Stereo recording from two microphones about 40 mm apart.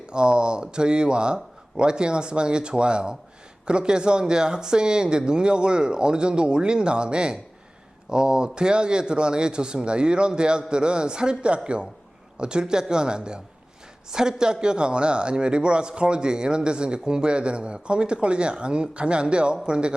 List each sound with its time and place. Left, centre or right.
0.1 s a man's voice: right